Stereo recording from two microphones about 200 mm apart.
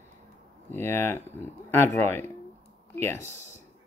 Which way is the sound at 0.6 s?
10° left (ahead or behind).